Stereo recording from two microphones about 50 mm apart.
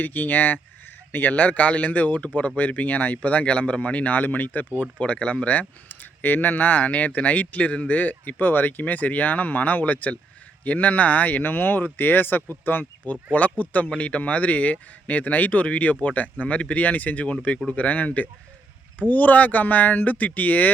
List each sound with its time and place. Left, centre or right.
0.0 s speech: left